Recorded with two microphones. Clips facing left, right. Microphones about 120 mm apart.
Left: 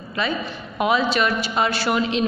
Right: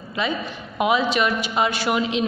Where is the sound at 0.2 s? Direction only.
20° right (ahead or behind).